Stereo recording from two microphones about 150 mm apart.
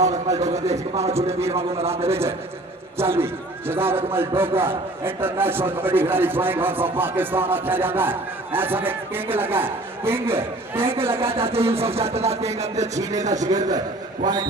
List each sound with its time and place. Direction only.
0.7 s speech: 45° right (ahead or behind)
2.0 s a man's voice: 15° right (ahead or behind)
10.9 s speech: 40° right (ahead or behind)
13.0 s a man's voice: 20° right (ahead or behind)
13.2 s speech: 55° right (ahead or behind)
13.5 s a man's voice: 25° right (ahead or behind)